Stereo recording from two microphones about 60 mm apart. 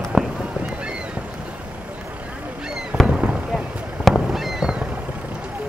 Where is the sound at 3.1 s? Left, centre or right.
Right.